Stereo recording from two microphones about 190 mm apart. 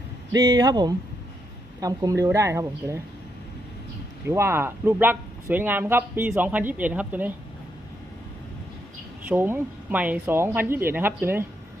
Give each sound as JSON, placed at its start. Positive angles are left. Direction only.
{"t": 0.4, "sound": "speech", "side_deg": -20}
{"t": 4.3, "sound": "speech", "side_deg": -10}
{"t": 9.2, "sound": "speech", "side_deg": -10}